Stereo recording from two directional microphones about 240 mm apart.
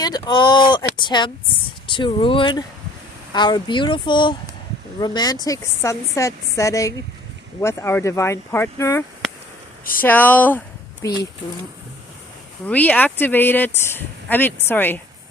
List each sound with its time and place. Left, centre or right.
0.0 s speech: centre
12.6 s speech: centre